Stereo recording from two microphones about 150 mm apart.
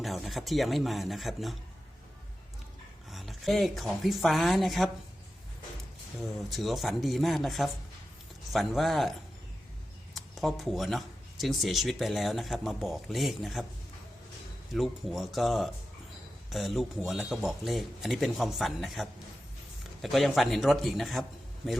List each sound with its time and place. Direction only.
0.0 s speech: centre (ahead or behind)
3.1 s speech: centre (ahead or behind)
6.5 s speech: centre (ahead or behind)
10.2 s speech: centre (ahead or behind)
14.7 s speech: centre (ahead or behind)